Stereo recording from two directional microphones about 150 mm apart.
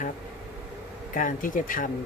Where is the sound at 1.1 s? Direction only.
60° left (ahead or behind).